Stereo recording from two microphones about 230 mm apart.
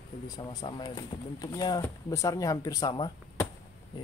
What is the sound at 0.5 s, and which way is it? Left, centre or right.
Speech, centre.